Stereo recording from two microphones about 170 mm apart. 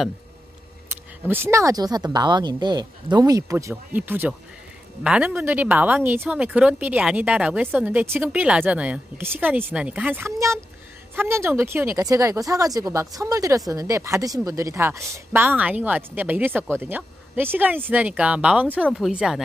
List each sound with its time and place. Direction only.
0.8 s a woman's voice: 15° right (ahead or behind)